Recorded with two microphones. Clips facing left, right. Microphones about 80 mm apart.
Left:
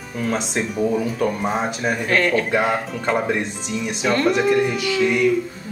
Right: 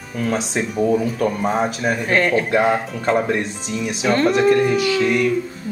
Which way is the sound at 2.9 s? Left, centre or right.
Centre.